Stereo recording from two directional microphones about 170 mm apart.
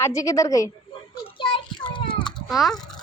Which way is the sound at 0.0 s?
20° left (ahead or behind).